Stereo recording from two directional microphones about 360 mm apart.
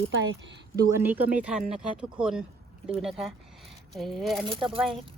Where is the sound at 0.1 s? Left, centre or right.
Right.